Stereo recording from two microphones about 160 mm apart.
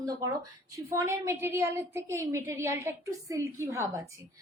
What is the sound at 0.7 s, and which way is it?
A woman's voice, 15° right (ahead or behind).